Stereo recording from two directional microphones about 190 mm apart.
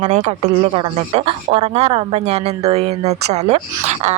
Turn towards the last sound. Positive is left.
turn(degrees=-35)  # may be behind; listen again after turning